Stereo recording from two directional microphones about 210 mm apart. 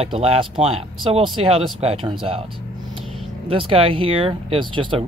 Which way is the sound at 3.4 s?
25° right (ahead or behind).